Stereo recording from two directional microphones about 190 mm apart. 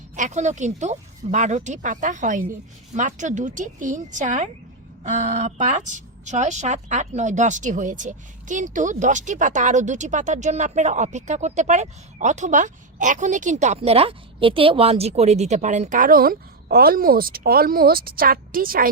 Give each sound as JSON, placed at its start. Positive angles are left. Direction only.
{"t": 0.2, "sound": "a woman's voice", "side_deg": -40}